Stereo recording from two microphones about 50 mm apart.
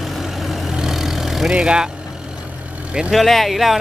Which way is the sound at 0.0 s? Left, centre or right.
Centre.